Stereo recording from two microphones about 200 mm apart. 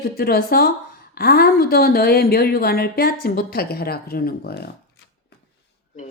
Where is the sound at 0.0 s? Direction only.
50° left (ahead or behind).